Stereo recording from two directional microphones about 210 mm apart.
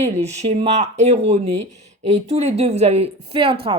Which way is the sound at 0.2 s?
30° right (ahead or behind).